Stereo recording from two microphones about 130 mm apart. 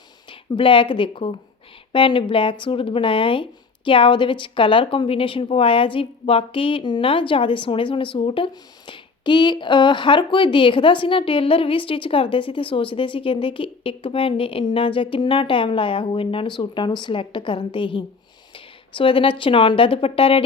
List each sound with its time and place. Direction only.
0.3 s a woman's voice: 40° left (ahead or behind)